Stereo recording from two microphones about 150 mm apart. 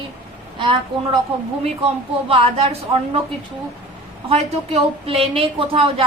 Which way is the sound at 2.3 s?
40° right (ahead or behind).